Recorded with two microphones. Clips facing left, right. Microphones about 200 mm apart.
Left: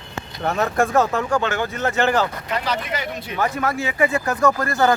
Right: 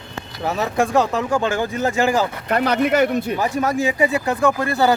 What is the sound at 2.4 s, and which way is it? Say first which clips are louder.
Speech: right 7 dB; 55° right (ahead or behind).